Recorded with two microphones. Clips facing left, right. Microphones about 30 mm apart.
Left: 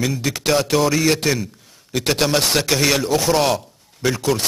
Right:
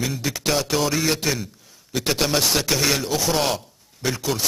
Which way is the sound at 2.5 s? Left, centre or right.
Left.